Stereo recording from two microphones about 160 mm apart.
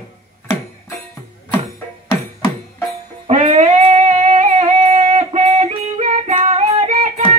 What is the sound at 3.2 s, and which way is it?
Music, 40° right (ahead or behind).